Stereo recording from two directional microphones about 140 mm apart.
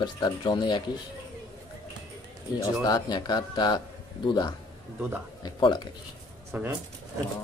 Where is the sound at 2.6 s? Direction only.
30° left (ahead or behind).